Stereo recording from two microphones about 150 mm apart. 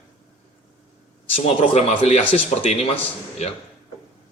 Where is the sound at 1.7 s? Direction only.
45° left (ahead or behind).